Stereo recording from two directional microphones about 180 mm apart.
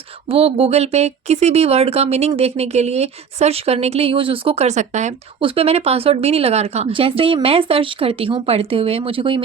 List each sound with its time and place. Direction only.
0.3 s speech: 35° right (ahead or behind)
5.4 s speech: 30° right (ahead or behind)